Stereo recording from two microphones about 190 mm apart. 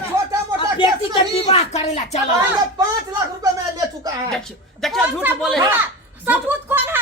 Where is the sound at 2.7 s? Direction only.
20° right (ahead or behind).